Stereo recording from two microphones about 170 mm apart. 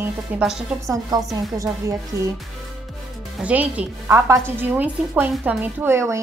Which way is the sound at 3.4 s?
10° right (ahead or behind).